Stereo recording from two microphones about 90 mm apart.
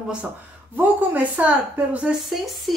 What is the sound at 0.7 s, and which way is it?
A woman's voice, 15° right (ahead or behind).